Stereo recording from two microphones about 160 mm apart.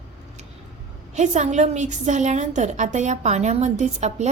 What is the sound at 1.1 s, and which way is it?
Speech, 50° right (ahead or behind).